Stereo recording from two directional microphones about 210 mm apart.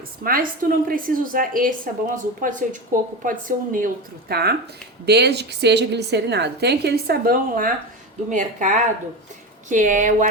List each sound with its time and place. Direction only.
0.3 s a woman's voice: 45° right (ahead or behind)